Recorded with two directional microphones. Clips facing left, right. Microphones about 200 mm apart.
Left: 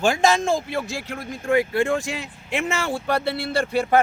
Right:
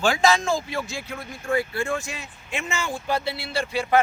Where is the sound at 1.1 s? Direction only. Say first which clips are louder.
Left 4 dB; 55° left (ahead or behind).